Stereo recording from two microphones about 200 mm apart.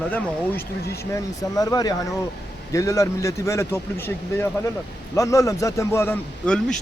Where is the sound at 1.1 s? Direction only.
15° left (ahead or behind).